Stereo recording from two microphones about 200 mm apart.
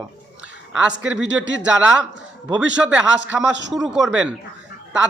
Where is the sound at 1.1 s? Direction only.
70° right (ahead or behind).